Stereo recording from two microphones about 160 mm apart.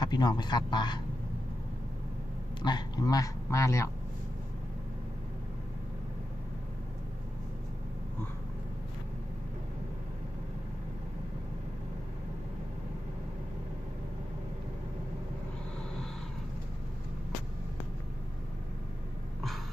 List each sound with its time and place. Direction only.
0.0 s speech: 25° left (ahead or behind)
2.6 s speech: 25° left (ahead or behind)